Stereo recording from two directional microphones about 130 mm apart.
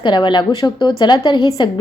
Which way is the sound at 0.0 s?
35° left (ahead or behind).